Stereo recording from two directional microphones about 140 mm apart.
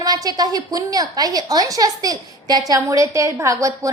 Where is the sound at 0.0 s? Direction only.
30° right (ahead or behind).